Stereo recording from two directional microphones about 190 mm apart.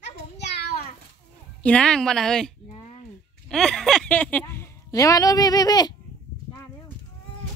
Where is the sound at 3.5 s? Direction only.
5° left (ahead or behind); by 5.9 s 20° left (ahead or behind).